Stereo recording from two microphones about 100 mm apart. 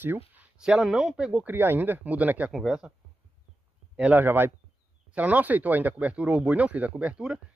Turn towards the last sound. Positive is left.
turn(degrees=-10)  # may be behind; listen again after turning